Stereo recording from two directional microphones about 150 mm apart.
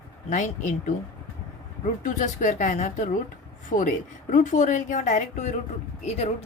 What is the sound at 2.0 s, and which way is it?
A woman's voice, 55° left (ahead or behind).